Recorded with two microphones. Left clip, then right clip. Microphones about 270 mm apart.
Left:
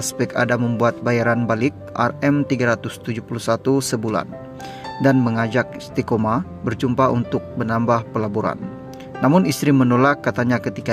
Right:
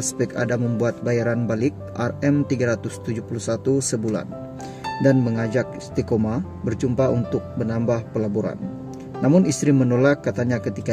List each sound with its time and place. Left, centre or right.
0.0 s speech: centre